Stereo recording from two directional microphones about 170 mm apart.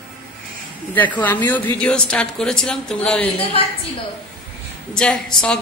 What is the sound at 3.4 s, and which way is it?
Speech, 35° left (ahead or behind).